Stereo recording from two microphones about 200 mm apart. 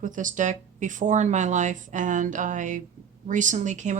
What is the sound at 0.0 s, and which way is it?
Speech, 40° right (ahead or behind).